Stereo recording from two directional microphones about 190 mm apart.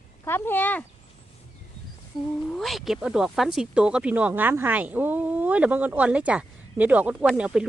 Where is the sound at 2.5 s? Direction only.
Centre (ahead or behind).